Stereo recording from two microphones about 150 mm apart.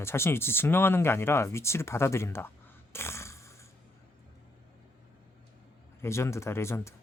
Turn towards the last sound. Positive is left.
turn(degrees=20)  # may be behind; listen again after turning